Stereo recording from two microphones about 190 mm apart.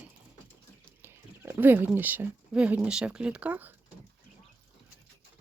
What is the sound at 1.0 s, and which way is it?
Speech, 10° right (ahead or behind).